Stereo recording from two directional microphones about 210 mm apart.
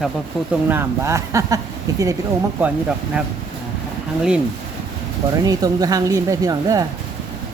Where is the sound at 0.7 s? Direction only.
10° right (ahead or behind).